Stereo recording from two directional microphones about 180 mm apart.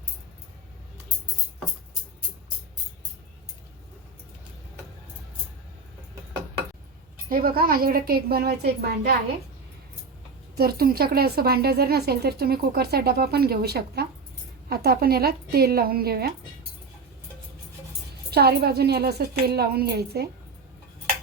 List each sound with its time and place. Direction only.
7.3 s speech: 55° right (ahead or behind)
10.6 s speech: 55° right (ahead or behind)
18.3 s speech: 60° right (ahead or behind)